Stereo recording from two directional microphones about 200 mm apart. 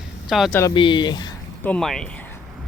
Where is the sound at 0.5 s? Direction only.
20° left (ahead or behind).